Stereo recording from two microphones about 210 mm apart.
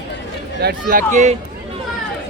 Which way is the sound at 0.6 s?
45° right (ahead or behind).